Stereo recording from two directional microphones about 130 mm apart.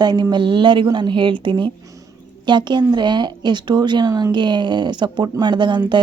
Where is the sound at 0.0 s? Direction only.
35° right (ahead or behind).